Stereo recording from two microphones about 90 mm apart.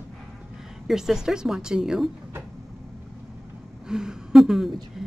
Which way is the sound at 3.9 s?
5° right (ahead or behind).